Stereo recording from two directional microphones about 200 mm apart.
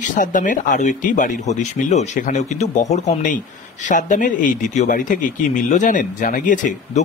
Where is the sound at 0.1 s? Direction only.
40° left (ahead or behind).